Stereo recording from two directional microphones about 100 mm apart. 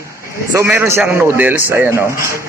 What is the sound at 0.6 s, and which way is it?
A man's voice, 20° right (ahead or behind).